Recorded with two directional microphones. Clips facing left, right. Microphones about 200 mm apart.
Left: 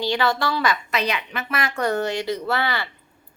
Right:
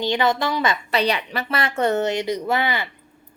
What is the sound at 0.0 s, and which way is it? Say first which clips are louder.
A woman's voice: right 2 dB; 20° right (ahead or behind).